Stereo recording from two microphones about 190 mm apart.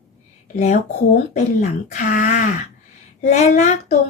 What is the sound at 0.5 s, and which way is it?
Speech, 40° left (ahead or behind).